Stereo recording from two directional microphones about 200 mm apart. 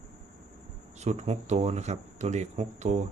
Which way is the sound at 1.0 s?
35° right (ahead or behind).